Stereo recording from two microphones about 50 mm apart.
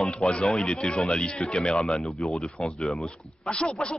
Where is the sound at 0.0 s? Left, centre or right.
Centre.